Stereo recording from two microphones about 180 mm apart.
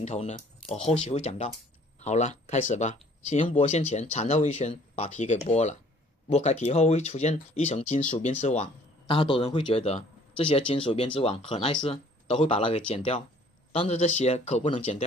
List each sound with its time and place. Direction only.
0.0 s speech: 40° left (ahead or behind)
9.0 s a man's voice: 30° left (ahead or behind)